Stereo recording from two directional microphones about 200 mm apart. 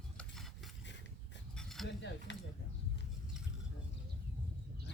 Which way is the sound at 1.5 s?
Centre (ahead or behind).